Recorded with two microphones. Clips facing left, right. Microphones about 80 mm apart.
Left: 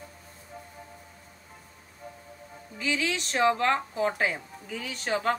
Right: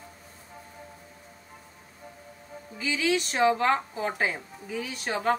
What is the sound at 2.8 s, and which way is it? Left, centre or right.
A woman's voice, centre.